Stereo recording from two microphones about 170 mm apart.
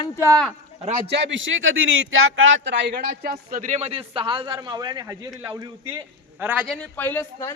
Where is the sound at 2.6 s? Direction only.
90° right; by 5.3 s 20° right (ahead or behind).